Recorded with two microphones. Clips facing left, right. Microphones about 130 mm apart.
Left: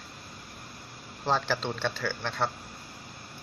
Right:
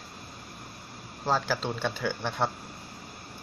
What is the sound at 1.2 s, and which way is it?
Speech, 5° right (ahead or behind).